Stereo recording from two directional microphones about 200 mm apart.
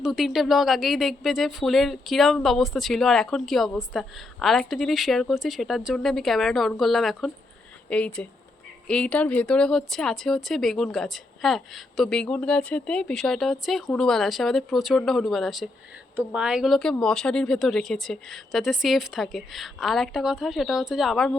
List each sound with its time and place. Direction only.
0.0 s speech: centre (ahead or behind)